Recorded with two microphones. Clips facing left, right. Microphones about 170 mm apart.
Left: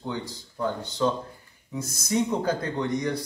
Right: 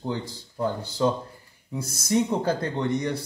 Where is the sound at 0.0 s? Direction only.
30° right (ahead or behind).